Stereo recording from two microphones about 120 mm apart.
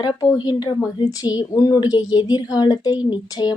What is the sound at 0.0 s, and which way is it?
A woman's voice, 35° left (ahead or behind).